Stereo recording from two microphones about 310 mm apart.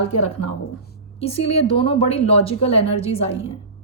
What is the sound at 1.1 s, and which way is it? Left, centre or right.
Speech, centre.